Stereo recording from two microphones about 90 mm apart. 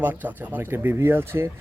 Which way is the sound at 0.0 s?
20° right (ahead or behind).